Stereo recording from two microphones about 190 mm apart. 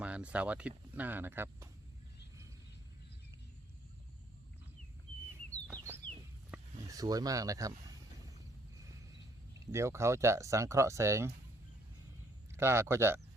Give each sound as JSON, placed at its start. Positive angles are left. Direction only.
{"t": 0.0, "sound": "speech", "side_deg": -5}
{"t": 6.5, "sound": "a sound", "side_deg": -15}
{"t": 9.7, "sound": "speech", "side_deg": -15}
{"t": 12.5, "sound": "speech", "side_deg": -15}